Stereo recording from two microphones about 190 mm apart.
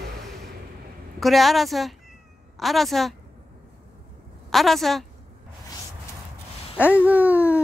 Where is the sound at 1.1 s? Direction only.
Centre (ahead or behind).